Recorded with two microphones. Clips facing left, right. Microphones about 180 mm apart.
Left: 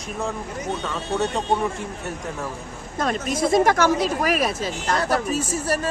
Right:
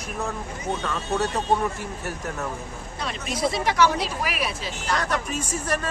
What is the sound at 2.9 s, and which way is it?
Speech, 45° left (ahead or behind).